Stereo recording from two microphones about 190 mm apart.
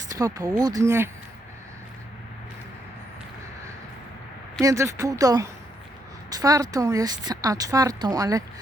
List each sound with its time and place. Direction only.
0.1 s speech: 15° right (ahead or behind)
4.6 s speech: 15° right (ahead or behind)